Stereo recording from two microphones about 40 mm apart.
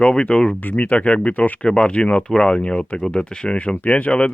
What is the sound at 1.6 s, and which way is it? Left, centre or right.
Speech, left.